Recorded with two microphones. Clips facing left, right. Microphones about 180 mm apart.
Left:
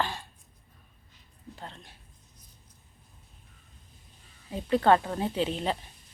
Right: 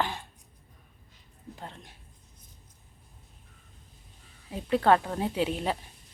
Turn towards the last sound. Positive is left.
turn(degrees=-5)  # may be behind; listen again after turning